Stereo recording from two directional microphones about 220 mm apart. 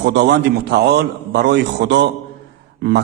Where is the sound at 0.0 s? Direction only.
50° right (ahead or behind).